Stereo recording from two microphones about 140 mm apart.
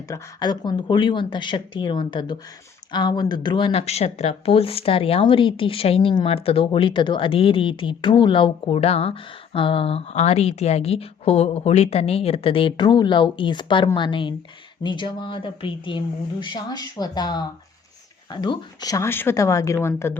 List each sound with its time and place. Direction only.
0.1 s speech: 30° left (ahead or behind)